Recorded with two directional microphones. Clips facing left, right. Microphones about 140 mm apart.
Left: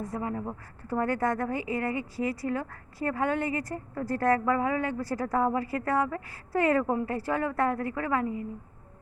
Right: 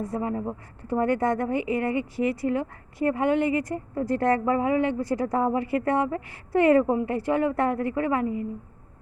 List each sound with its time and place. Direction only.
0.1 s speech: 25° right (ahead or behind)